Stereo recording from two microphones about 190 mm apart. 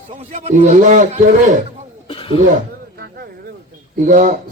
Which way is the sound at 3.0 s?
55° right (ahead or behind).